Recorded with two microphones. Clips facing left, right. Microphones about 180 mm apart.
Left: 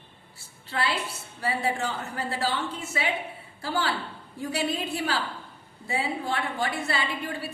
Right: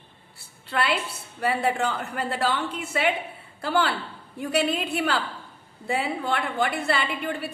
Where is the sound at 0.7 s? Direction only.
60° right (ahead or behind).